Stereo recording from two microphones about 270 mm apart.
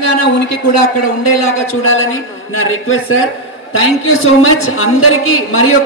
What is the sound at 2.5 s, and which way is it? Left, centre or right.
Speech, left.